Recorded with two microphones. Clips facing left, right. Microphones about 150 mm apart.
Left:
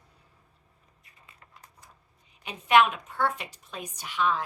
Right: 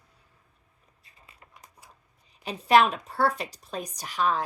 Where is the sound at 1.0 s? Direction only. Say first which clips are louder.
Right 1 dB; 25° right (ahead or behind).